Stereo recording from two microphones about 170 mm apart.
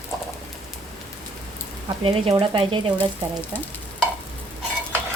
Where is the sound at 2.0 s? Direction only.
35° right (ahead or behind).